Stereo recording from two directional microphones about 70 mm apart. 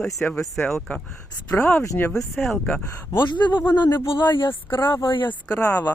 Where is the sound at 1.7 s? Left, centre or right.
Left.